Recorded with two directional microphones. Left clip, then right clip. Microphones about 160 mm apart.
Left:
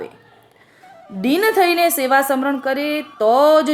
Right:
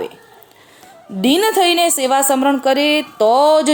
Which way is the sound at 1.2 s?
20° right (ahead or behind).